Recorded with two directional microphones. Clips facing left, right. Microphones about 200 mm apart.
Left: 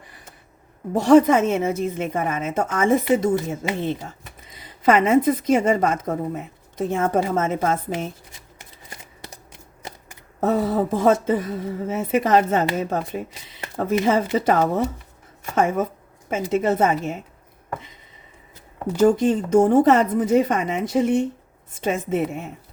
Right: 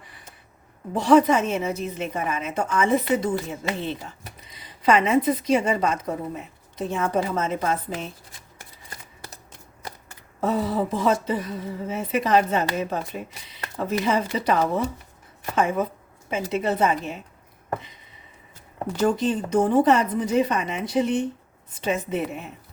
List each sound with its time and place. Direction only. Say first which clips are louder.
0.9 s a woman's voice: left 3 dB; 45° left (ahead or behind)
8.5 s shuffling cards: left 1 dB; 20° left (ahead or behind)
10.4 s a woman's voice: left 3 dB; 50° left (ahead or behind)
18.9 s a woman's voice: left 5 dB; 45° left (ahead or behind)